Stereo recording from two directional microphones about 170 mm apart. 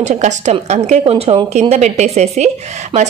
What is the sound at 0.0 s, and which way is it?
A woman's voice, 45° right (ahead or behind).